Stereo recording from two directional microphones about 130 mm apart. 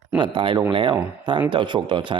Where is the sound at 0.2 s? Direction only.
35° right (ahead or behind).